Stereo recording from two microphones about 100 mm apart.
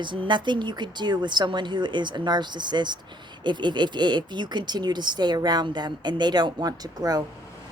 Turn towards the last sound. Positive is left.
turn(degrees=-40)  # may be behind; listen again after turning